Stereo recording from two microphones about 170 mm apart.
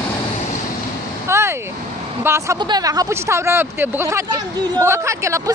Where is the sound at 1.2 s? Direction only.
15° right (ahead or behind).